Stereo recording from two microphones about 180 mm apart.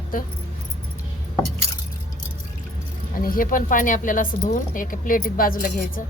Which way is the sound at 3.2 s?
50° left (ahead or behind).